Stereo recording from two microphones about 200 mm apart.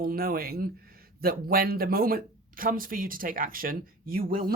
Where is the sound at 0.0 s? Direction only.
45° right (ahead or behind).